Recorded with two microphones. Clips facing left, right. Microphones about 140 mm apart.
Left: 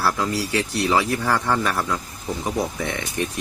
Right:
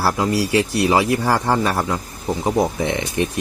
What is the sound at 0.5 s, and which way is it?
Speech, 20° right (ahead or behind).